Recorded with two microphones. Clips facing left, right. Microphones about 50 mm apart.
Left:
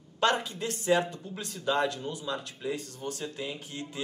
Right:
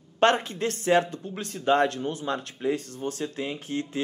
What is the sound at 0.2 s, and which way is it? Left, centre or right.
Speech, right.